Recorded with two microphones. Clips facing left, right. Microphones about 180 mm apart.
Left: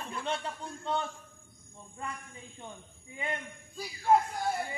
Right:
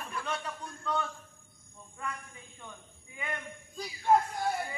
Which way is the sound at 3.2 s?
30° left (ahead or behind).